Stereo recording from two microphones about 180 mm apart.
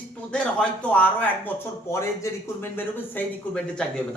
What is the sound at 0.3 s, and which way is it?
Speech, 5° left (ahead or behind).